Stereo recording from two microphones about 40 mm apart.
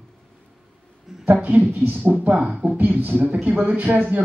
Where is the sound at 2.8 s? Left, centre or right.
Right.